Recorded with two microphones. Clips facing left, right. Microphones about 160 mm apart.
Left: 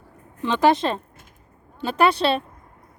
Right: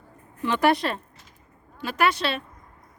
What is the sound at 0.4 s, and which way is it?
Speech, 20° left (ahead or behind).